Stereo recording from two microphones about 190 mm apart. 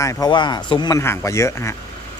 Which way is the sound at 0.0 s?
20° left (ahead or behind).